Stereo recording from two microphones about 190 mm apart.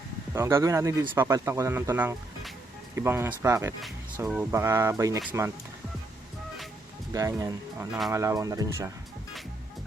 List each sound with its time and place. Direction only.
0.3 s speech: 15° right (ahead or behind)
7.1 s speech: 15° right (ahead or behind)